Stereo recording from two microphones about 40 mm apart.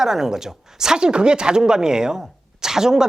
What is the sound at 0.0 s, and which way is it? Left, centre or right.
Speech, centre.